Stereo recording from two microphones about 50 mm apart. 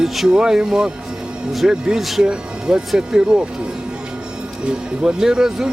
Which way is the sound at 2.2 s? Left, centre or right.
Centre.